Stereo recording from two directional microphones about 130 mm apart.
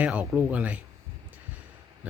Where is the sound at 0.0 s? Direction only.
10° right (ahead or behind).